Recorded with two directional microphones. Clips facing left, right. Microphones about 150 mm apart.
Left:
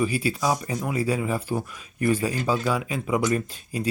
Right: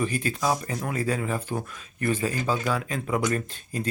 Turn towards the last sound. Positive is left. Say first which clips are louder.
# left 3 dB
turn(degrees=10)  # may be behind; listen again after turning